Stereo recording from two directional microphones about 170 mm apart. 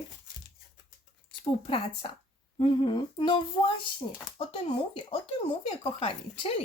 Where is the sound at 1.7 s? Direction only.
30° left (ahead or behind).